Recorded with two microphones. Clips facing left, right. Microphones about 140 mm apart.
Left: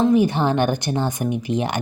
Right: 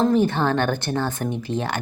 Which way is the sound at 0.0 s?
10° left (ahead or behind).